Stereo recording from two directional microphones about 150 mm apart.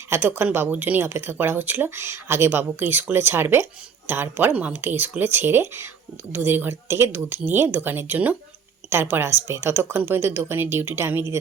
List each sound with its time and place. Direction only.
0.1 s speech: 15° right (ahead or behind)